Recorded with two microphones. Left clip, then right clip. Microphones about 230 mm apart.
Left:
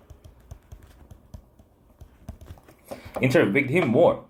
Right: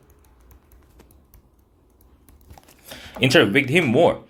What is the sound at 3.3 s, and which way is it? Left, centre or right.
Speech, right.